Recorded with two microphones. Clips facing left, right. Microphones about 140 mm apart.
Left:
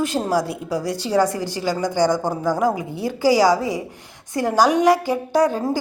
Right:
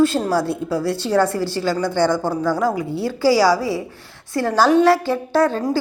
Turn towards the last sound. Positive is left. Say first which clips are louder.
# right 1 dB
turn(degrees=15)  # may be behind; listen again after turning